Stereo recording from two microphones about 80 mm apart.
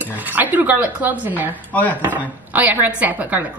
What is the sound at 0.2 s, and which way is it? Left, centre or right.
A woman's voice, right.